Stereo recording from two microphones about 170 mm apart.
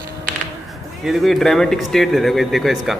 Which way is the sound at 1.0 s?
Centre (ahead or behind).